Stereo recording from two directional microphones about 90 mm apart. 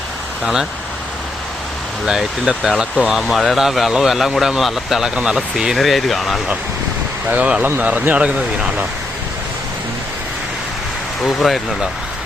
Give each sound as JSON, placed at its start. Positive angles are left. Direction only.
{"t": 0.4, "sound": "speech", "side_deg": -5}
{"t": 2.0, "sound": "speech", "side_deg": -5}
{"t": 7.3, "sound": "speech", "side_deg": -15}
{"t": 11.2, "sound": "speech", "side_deg": 0}